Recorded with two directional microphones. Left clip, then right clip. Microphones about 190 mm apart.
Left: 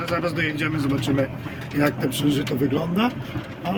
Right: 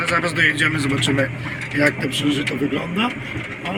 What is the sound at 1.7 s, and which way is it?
A man's voice, 25° left (ahead or behind).